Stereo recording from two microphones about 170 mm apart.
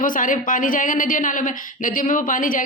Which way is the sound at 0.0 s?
50° left (ahead or behind).